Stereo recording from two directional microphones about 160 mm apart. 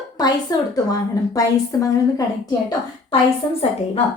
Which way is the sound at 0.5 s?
25° left (ahead or behind).